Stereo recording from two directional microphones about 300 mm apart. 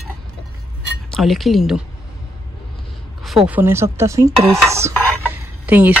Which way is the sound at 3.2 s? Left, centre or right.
Centre.